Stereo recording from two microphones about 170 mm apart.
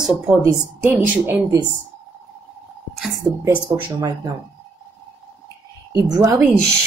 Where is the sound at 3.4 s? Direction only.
25° right (ahead or behind).